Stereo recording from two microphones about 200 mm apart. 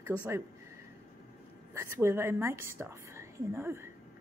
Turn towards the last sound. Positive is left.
turn(degrees=-10)  # may be behind; listen again after turning